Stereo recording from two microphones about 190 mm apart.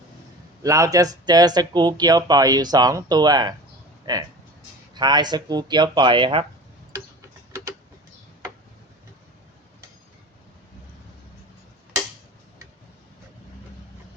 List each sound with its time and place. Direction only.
0.6 s speech: 15° right (ahead or behind)